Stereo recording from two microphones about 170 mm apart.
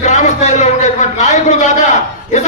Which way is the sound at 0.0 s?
45° left (ahead or behind).